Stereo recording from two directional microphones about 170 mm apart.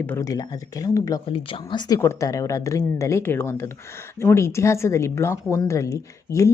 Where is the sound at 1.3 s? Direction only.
30° left (ahead or behind).